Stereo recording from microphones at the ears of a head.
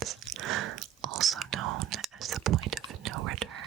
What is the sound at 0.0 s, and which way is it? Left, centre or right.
Whispering, right.